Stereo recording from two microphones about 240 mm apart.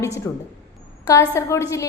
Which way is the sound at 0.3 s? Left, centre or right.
Centre.